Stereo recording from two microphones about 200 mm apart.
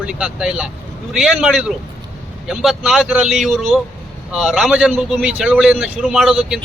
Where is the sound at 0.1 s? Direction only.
5° right (ahead or behind).